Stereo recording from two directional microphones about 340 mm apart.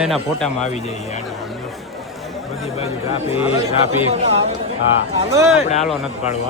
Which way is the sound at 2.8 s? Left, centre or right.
Centre.